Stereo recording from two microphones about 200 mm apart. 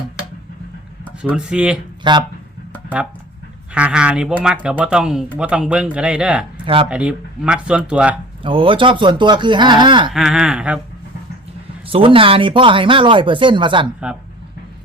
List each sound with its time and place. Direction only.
1.2 s speech: 5° right (ahead or behind)
2.0 s speech: 25° right (ahead or behind)
3.8 s speech: 5° right (ahead or behind)
8.4 s speech: 25° right (ahead or behind)
10.1 s speech: centre (ahead or behind)
11.9 s speech: 25° right (ahead or behind)